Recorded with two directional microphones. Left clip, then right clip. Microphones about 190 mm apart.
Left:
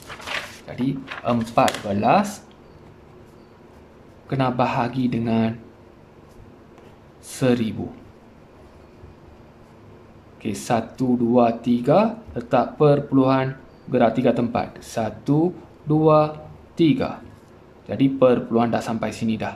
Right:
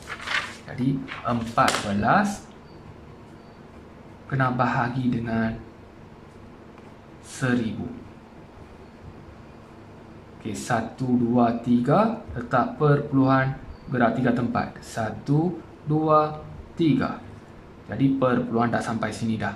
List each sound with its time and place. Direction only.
0.7 s speech: 10° left (ahead or behind)
4.3 s speech: 15° left (ahead or behind)
7.4 s a man's voice: 20° left (ahead or behind)
10.4 s speech: 15° left (ahead or behind)